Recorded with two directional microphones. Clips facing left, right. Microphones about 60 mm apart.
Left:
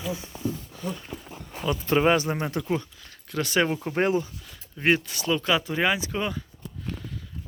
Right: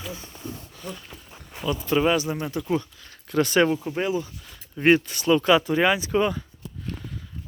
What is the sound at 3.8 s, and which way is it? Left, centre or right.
Speech, left.